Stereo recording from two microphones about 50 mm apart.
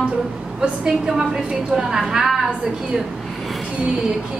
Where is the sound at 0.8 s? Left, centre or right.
Centre.